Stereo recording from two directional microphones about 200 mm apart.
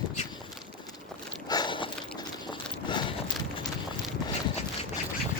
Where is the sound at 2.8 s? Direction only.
25° left (ahead or behind).